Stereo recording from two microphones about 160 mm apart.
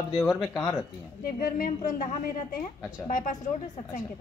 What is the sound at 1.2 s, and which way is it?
A woman's voice, 65° left (ahead or behind).